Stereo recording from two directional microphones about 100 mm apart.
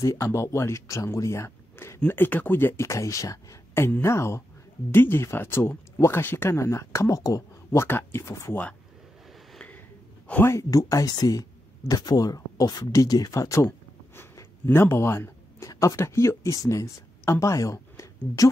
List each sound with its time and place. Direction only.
0.0 s speech: 30° left (ahead or behind)
10.4 s speech: 30° left (ahead or behind)